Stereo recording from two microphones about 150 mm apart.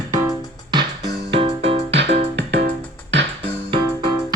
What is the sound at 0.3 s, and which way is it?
Music, 30° right (ahead or behind).